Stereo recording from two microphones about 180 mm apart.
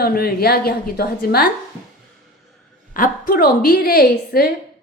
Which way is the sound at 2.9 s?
55° left (ahead or behind).